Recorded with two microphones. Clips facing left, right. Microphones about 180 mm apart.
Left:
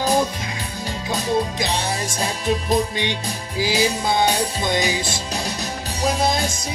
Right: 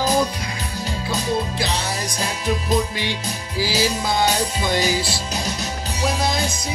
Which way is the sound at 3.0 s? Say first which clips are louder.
Left 1 dB; 20° left (ahead or behind).